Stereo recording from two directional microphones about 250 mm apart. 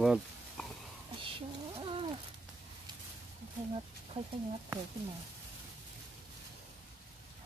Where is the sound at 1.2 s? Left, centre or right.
Right.